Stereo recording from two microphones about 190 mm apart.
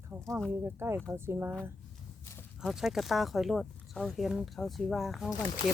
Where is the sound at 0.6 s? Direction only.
15° right (ahead or behind).